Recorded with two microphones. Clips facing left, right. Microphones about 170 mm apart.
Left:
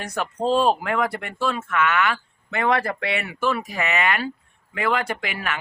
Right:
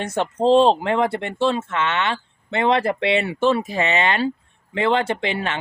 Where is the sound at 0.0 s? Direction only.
25° right (ahead or behind).